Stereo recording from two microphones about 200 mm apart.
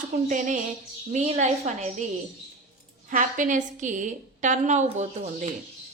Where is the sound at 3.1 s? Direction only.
40° right (ahead or behind).